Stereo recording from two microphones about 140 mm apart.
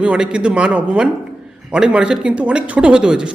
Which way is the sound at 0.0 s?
10° right (ahead or behind).